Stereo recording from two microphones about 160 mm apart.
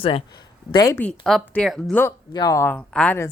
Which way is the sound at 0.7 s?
20° left (ahead or behind).